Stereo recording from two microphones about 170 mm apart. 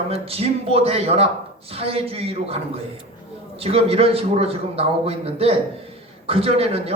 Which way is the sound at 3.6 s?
35° right (ahead or behind).